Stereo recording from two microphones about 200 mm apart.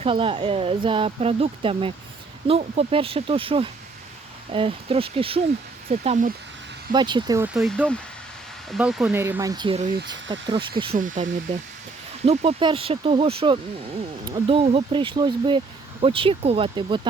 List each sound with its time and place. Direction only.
0.0 s speech: 25° right (ahead or behind)
6.9 s speech: 20° right (ahead or behind)
7.4 s speech: centre (ahead or behind)
9.2 s speech: 15° right (ahead or behind)
10.9 s speech: 40° right (ahead or behind); by 17.1 s 25° right (ahead or behind)